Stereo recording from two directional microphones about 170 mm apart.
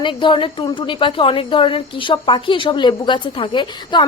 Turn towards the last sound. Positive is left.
turn(degrees=25)  # may be behind; listen again after turning